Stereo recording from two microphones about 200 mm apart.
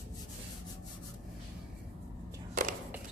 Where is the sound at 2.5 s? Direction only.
40° right (ahead or behind).